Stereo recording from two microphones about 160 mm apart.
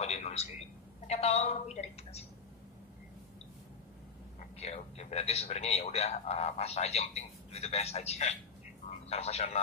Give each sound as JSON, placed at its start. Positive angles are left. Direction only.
{"t": 0.0, "sound": "a sound", "side_deg": 40}
{"t": 1.0, "sound": "a woman's voice", "side_deg": 40}
{"t": 4.6, "sound": "a man's voice", "side_deg": 40}